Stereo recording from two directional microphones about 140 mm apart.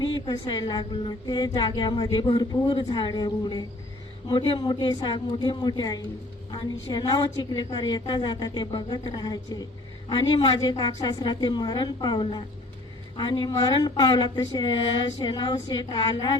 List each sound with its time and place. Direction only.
0.0 s a woman's voice: 30° left (ahead or behind)